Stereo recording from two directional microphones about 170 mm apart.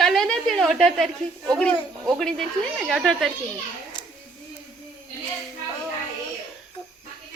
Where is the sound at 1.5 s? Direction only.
5° left (ahead or behind).